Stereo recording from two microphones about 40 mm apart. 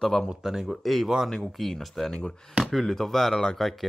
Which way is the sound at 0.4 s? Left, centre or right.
Centre.